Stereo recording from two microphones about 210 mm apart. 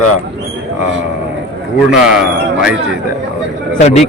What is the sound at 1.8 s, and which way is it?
Speech, 5° right (ahead or behind).